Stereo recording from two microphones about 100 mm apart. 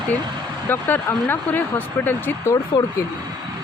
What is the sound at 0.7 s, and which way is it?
Speech, 20° left (ahead or behind).